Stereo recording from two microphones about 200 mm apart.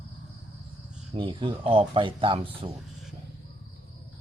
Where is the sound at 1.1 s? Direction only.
25° right (ahead or behind).